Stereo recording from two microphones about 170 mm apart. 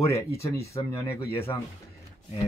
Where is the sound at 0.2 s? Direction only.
15° left (ahead or behind).